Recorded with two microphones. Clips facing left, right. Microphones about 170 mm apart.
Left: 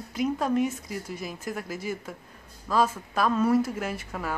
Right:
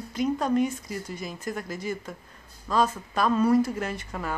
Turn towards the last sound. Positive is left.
turn(degrees=5)  # may be behind; listen again after turning